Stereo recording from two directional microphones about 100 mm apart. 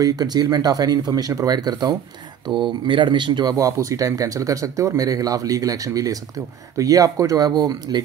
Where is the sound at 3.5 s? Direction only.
35° right (ahead or behind).